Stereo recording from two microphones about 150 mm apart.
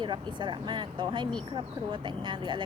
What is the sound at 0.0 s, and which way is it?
Speech, 30° right (ahead or behind).